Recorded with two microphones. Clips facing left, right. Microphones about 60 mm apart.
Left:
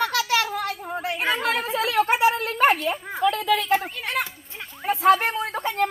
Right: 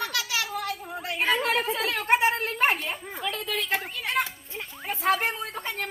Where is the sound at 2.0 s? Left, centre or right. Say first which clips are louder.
Left 2 dB; left.